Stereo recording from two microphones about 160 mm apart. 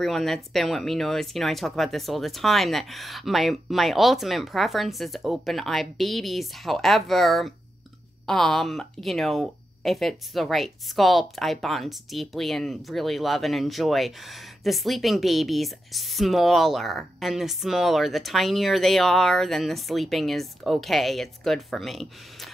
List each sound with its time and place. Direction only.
0.0 s speech: centre (ahead or behind)